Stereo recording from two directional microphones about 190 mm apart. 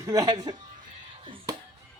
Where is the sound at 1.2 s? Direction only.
25° right (ahead or behind).